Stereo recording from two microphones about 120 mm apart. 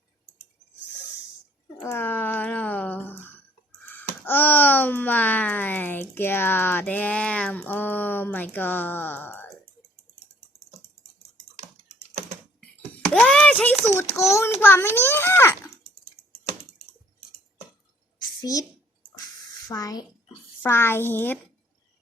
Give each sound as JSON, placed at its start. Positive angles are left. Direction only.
{"t": 1.8, "sound": "a sound", "side_deg": 20}
{"t": 3.8, "sound": "speech", "side_deg": 15}
{"t": 13.1, "sound": "a sound", "side_deg": 5}
{"t": 13.8, "sound": "a child's voice", "side_deg": 25}
{"t": 18.3, "sound": "a woman's voice", "side_deg": 30}
{"t": 19.6, "sound": "speech", "side_deg": 30}
{"t": 20.6, "sound": "a child's voice", "side_deg": 20}